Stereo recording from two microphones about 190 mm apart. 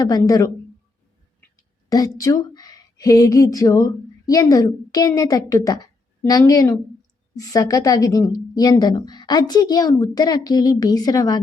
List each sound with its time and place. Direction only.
0.0 s a woman's voice: 20° left (ahead or behind)